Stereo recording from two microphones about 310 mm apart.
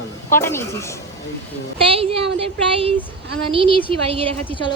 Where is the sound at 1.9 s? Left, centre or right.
Centre.